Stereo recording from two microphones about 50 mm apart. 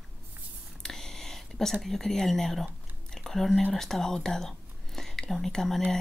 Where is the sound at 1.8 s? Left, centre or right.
Centre.